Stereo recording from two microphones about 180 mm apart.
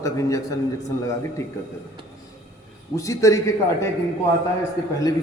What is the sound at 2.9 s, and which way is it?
Speech, 15° left (ahead or behind).